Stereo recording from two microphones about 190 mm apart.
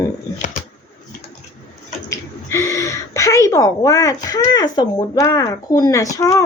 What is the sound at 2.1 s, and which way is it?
Speech, 15° left (ahead or behind).